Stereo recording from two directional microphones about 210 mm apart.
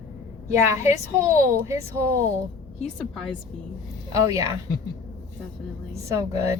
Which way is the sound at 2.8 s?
5° left (ahead or behind).